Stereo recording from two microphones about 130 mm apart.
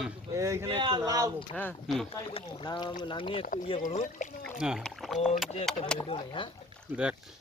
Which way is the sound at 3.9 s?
70° left (ahead or behind).